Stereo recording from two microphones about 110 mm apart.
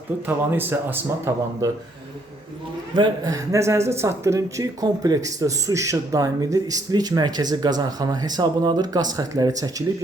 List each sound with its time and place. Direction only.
0.3 s speech: 20° right (ahead or behind)
2.9 s speech: 40° right (ahead or behind)